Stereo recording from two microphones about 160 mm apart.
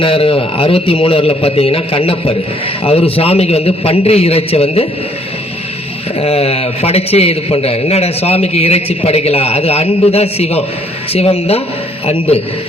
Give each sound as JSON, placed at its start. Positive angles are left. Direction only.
{"t": 0.0, "sound": "a man's voice", "side_deg": 35}
{"t": 6.1, "sound": "a man's voice", "side_deg": 40}